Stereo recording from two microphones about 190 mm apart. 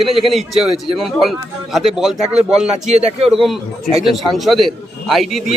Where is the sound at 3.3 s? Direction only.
Centre (ahead or behind).